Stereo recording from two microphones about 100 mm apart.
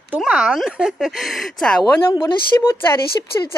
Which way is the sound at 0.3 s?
10° right (ahead or behind).